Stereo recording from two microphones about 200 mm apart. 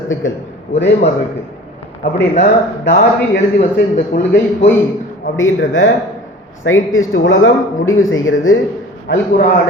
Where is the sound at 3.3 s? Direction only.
35° left (ahead or behind).